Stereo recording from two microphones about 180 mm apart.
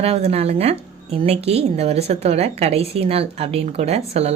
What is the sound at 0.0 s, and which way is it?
A woman's voice, 35° right (ahead or behind).